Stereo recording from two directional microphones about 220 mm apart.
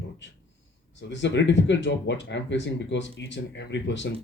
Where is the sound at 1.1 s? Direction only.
55° left (ahead or behind).